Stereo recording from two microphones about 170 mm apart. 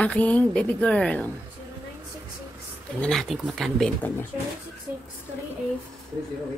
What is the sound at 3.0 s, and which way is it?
Speech, 5° left (ahead or behind).